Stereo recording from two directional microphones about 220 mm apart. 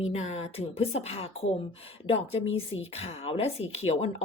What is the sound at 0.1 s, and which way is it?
Speech, 30° left (ahead or behind).